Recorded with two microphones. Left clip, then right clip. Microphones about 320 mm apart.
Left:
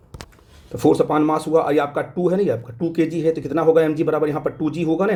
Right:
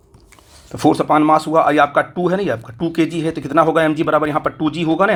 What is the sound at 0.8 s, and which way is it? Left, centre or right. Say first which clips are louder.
Speech: right 3 dB; centre.